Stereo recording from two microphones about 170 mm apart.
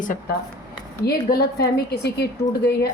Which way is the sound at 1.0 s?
65° left (ahead or behind).